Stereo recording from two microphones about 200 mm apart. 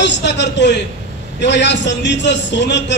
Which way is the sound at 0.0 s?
60° left (ahead or behind).